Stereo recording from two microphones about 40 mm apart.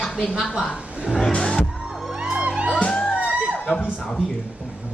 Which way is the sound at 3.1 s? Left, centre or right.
Left.